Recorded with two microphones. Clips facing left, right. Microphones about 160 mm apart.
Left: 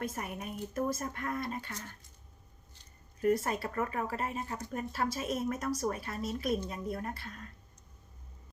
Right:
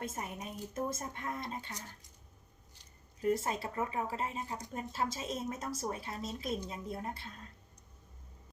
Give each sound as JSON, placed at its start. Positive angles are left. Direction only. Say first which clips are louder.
{"t": 0.0, "sound": "speech", "louder": "left 3 dB", "side_deg": -25}
{"t": 3.2, "sound": "speech", "louder": "left 3 dB", "side_deg": -25}